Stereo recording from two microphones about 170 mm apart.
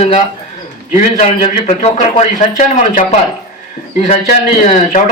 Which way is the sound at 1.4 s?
35° left (ahead or behind).